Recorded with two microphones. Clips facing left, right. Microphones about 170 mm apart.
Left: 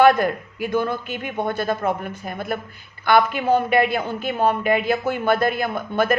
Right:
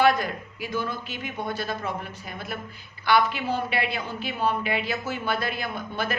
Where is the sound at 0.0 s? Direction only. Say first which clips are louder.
Left 6 dB; 55° left (ahead or behind).